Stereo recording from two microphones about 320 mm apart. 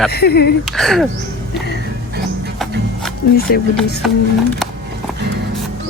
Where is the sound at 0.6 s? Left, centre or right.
Centre.